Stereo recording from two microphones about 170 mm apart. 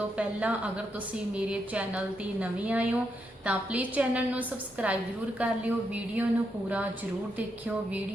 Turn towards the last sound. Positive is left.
turn(degrees=-10)  # may be behind; listen again after turning